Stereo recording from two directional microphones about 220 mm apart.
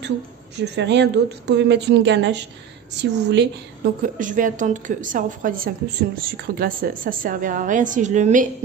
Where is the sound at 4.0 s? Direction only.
35° right (ahead or behind).